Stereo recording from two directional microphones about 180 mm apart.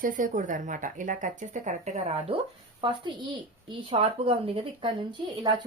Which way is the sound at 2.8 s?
25° right (ahead or behind).